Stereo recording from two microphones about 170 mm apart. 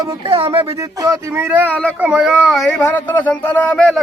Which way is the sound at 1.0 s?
20° right (ahead or behind).